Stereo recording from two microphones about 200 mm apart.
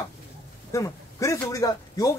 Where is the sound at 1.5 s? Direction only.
15° left (ahead or behind).